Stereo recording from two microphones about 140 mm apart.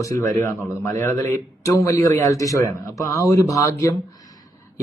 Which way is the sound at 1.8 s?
25° left (ahead or behind).